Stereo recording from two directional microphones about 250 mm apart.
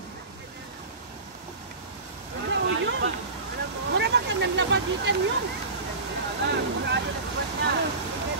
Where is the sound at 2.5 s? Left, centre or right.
Right.